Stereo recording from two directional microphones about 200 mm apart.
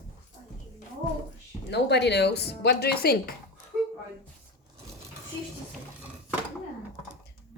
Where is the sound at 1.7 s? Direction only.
55° left (ahead or behind).